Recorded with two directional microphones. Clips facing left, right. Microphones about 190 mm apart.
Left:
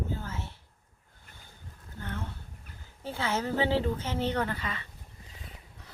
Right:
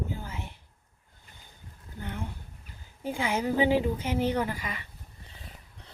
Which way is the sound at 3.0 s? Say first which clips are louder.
Right 3 dB; 15° right (ahead or behind).